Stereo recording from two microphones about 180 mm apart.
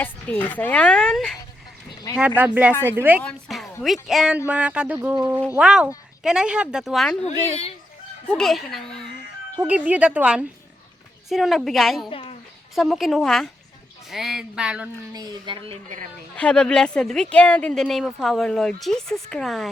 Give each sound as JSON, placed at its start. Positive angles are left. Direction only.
{"t": 0.0, "sound": "speech", "side_deg": 10}
{"t": 2.1, "sound": "speech", "side_deg": -10}
{"t": 3.2, "sound": "a sound", "side_deg": 0}
{"t": 3.8, "sound": "speech", "side_deg": 0}
{"t": 7.2, "sound": "a woman's voice", "side_deg": 35}
{"t": 8.3, "sound": "speech", "side_deg": 0}
{"t": 12.1, "sound": "a sound", "side_deg": 30}
{"t": 12.7, "sound": "speech", "side_deg": 0}
{"t": 15.1, "sound": "speech", "side_deg": -20}
{"t": 16.4, "sound": "speech", "side_deg": 5}